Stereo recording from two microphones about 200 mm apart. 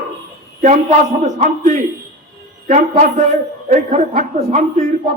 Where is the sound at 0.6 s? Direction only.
35° right (ahead or behind).